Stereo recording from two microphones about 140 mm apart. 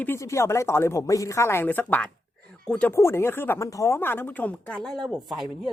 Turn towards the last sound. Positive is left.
turn(degrees=0)  # may be behind; listen again after turning